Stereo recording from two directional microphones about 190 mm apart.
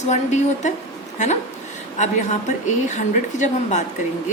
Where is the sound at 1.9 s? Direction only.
40° left (ahead or behind).